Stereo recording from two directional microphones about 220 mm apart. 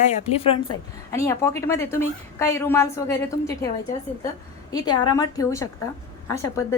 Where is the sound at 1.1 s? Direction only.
15° left (ahead or behind).